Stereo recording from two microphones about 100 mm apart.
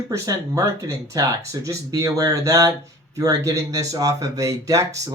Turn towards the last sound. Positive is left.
turn(degrees=-35)  # may be behind; listen again after turning